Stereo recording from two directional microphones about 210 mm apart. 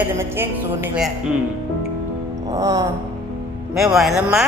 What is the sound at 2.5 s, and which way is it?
Speech, 15° right (ahead or behind).